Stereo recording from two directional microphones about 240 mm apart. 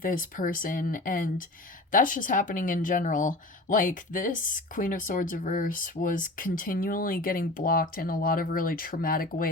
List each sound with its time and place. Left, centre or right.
0.0 s speech: left